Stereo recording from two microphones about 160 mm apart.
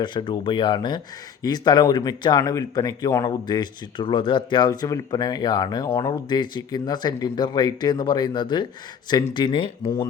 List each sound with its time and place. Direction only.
0.0 s speech: 30° left (ahead or behind)